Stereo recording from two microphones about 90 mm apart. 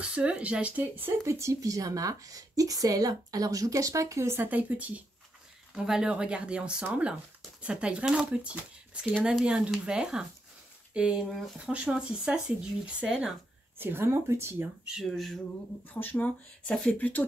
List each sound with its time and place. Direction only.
0.0 s speech: 15° right (ahead or behind)
13.7 s speech: 25° right (ahead or behind)
14.9 s speech: centre (ahead or behind)
15.9 s speech: 20° left (ahead or behind)